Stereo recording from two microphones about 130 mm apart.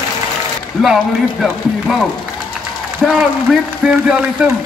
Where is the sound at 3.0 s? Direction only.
5° right (ahead or behind).